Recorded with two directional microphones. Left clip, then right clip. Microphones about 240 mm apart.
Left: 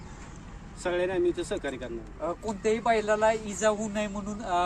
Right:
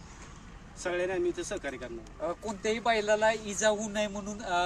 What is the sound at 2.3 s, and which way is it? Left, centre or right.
Speech, right.